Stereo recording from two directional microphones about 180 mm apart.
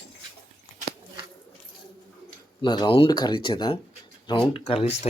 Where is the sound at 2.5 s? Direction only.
25° left (ahead or behind).